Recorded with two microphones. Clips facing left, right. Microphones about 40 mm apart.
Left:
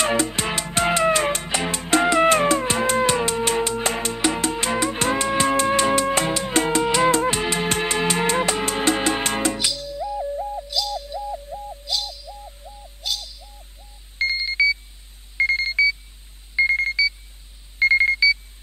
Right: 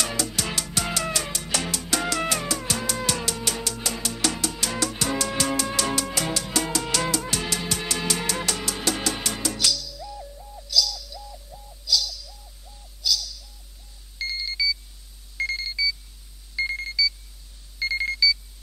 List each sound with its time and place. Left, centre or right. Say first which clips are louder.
0.0 s music: left 7 dB; left
10.3 s bird: left 2 dB; left
12.6 s a sound: left 9 dB; left
13.0 s bird: right 2 dB; left
14.1 s alarm clock: left 8 dB; left